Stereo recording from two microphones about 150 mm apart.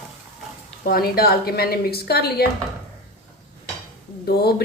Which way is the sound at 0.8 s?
90° left.